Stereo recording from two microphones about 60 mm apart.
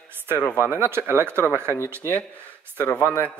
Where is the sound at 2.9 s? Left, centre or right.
Left.